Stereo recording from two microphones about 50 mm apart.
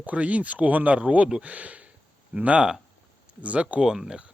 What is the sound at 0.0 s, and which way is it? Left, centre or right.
Speech, right.